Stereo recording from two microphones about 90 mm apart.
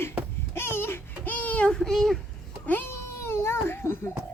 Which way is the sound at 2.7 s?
25° left (ahead or behind).